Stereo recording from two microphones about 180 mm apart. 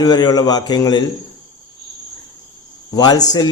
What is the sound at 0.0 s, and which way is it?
A man's voice, 25° left (ahead or behind).